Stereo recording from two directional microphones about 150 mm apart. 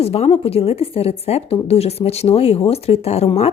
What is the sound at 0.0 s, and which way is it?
Speech, 45° left (ahead or behind).